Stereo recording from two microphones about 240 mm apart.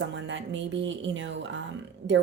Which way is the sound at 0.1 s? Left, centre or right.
Right.